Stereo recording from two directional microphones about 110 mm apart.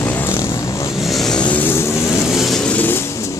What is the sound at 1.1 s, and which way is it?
Vehicle, 5° left (ahead or behind).